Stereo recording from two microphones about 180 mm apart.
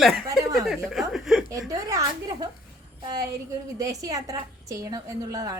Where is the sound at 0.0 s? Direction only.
Centre (ahead or behind).